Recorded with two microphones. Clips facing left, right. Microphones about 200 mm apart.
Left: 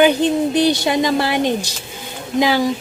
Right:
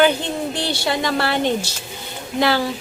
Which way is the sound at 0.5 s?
15° left (ahead or behind).